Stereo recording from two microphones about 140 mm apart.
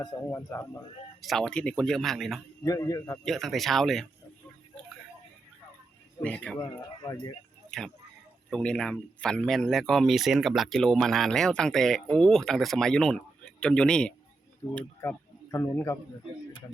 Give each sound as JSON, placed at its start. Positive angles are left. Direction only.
{"t": 0.0, "sound": "a man's voice", "side_deg": 25}
{"t": 1.2, "sound": "speech", "side_deg": 0}
{"t": 2.6, "sound": "a man's voice", "side_deg": 25}
{"t": 3.2, "sound": "speech", "side_deg": 0}
{"t": 6.2, "sound": "speech", "side_deg": 10}
{"t": 6.6, "sound": "speech", "side_deg": 30}
{"t": 7.7, "sound": "speech", "side_deg": 5}
{"t": 14.6, "sound": "a man's voice", "side_deg": 25}